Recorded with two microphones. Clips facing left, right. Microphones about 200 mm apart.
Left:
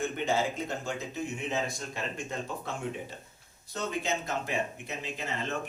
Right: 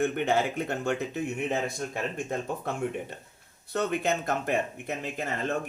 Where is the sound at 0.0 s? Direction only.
60° right (ahead or behind).